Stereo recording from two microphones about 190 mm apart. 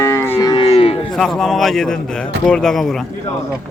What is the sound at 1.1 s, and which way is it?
A man's voice, centre (ahead or behind).